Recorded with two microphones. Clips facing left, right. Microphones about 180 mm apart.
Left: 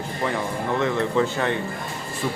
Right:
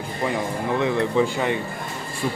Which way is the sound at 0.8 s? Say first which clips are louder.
Right 1 dB; 15° right (ahead or behind).